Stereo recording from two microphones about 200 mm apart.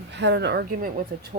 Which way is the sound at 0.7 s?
45° right (ahead or behind).